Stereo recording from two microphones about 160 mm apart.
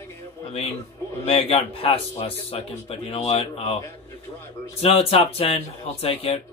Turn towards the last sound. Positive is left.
turn(degrees=40)  # may be behind; listen again after turning